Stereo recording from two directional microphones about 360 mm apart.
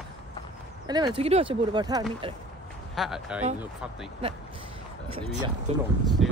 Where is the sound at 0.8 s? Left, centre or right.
Centre.